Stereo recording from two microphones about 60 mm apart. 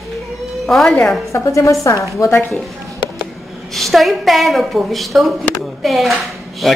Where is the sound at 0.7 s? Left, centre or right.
Centre.